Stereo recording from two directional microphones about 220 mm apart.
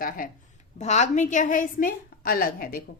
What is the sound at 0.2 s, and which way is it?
A woman's voice, 40° left (ahead or behind).